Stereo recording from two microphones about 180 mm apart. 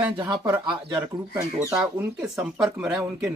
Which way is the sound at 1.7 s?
5° right (ahead or behind).